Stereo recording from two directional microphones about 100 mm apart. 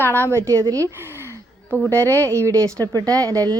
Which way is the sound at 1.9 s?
30° right (ahead or behind).